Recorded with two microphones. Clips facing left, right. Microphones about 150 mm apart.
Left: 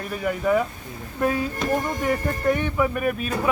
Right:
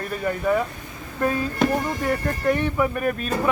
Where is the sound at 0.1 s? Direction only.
5° left (ahead or behind).